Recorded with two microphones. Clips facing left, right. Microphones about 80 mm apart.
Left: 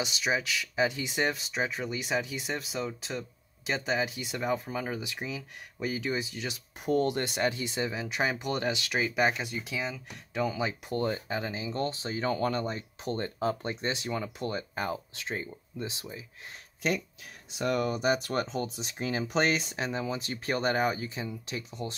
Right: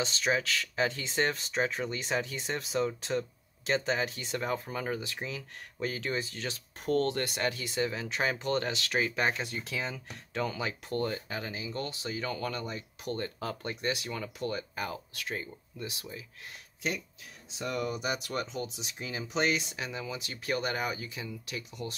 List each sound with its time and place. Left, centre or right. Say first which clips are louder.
0.0 s speech: even; centre
17.5 s speech: left 5 dB; left